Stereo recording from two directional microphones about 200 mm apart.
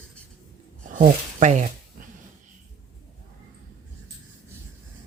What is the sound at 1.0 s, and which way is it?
Speech, 40° right (ahead or behind).